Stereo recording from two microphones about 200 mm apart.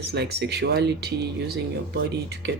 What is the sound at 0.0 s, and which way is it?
Speech, 55° right (ahead or behind).